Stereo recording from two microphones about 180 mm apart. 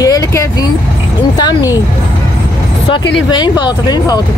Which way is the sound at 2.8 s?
30° left (ahead or behind).